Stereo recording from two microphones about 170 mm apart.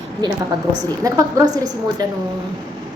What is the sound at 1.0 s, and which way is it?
A woman's voice, 20° right (ahead or behind).